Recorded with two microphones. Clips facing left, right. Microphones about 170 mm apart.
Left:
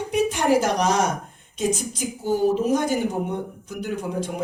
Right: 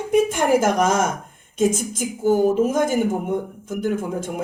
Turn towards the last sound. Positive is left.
turn(degrees=-50)  # may be behind; listen again after turning